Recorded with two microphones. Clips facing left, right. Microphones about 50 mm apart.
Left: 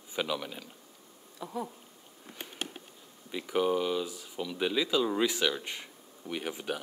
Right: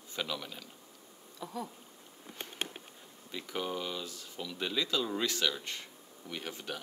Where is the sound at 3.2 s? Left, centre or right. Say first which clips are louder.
Left 9 dB; centre.